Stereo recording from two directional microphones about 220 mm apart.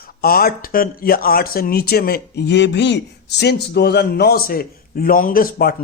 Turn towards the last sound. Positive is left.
turn(degrees=45)  # may be behind; listen again after turning